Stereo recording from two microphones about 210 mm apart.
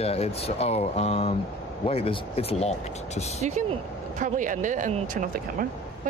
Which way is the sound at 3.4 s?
35° right (ahead or behind).